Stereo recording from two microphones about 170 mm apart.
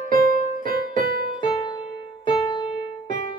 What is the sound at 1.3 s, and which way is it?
Music, 25° left (ahead or behind).